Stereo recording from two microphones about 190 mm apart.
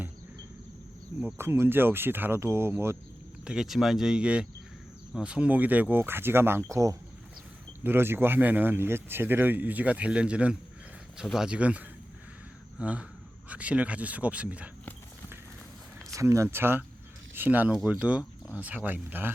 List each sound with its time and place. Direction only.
1.2 s speech: 10° right (ahead or behind)
16.1 s speech: 15° right (ahead or behind)